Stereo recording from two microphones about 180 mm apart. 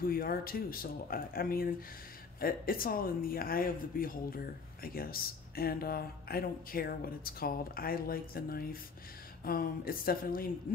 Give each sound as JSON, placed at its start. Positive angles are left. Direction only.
{"t": 0.0, "sound": "speech", "side_deg": 55}